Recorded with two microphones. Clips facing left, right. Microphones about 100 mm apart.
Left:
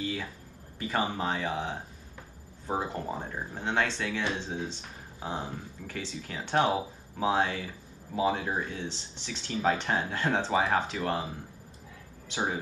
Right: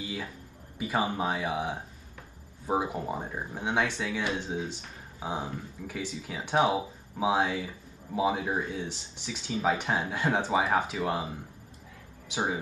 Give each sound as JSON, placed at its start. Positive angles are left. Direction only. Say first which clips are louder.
{"t": 0.0, "sound": "a sound", "louder": "left 2 dB", "side_deg": -10}
{"t": 0.7, "sound": "speech", "louder": "right 1 dB", "side_deg": -10}
{"t": 12.3, "sound": "speech", "louder": "right 1 dB", "side_deg": -10}